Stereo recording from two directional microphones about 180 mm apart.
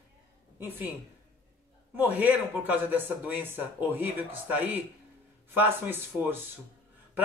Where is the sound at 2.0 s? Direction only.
10° right (ahead or behind).